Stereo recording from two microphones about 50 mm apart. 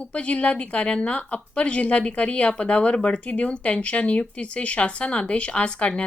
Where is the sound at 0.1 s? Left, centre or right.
Left.